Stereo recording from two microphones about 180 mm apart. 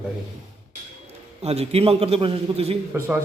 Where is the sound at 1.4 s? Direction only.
35° right (ahead or behind).